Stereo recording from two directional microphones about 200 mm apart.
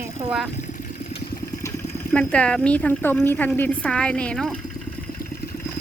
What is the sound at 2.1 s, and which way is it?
A woman's voice, 5° left (ahead or behind).